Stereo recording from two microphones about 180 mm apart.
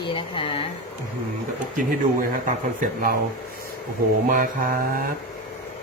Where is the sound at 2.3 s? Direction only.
50° right (ahead or behind).